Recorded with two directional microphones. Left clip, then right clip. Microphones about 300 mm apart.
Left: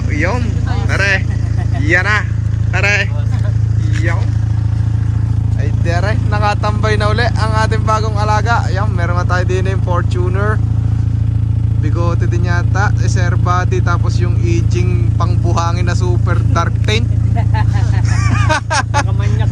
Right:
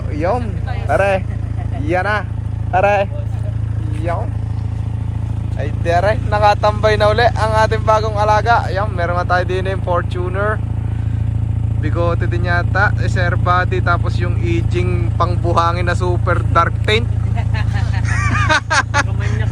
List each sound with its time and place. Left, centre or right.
0.1 s vehicle: centre
0.9 s speech: centre
5.8 s speech: centre
11.8 s speech: centre
17.3 s vehicle: left
18.1 s speech: centre